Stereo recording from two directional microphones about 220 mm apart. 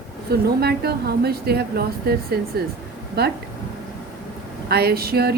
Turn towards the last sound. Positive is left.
turn(degrees=-45)  # may be behind; listen again after turning